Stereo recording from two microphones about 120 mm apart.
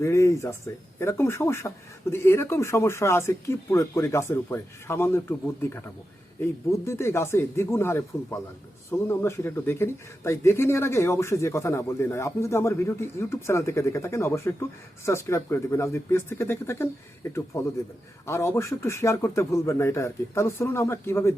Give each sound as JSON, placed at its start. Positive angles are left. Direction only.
{"t": 0.0, "sound": "speech", "side_deg": 25}